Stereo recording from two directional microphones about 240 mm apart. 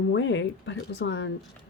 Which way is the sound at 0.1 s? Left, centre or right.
Left.